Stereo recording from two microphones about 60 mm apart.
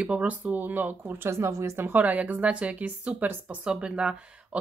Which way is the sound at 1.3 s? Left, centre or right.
Right.